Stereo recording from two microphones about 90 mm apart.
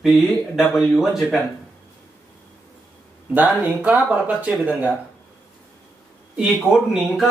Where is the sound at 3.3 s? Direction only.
15° right (ahead or behind).